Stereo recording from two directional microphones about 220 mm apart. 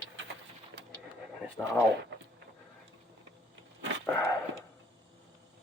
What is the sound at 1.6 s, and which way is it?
Speech, 15° left (ahead or behind).